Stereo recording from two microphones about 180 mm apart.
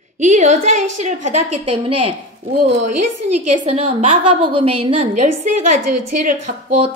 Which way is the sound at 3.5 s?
35° right (ahead or behind).